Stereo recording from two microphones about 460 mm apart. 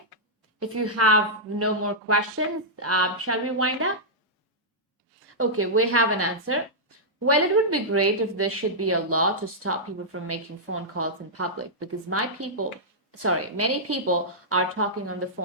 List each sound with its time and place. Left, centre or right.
0.6 s a woman's voice: right
5.4 s a woman's voice: right